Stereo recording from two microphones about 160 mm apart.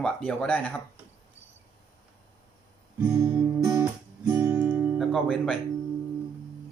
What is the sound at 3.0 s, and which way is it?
Music, 15° right (ahead or behind).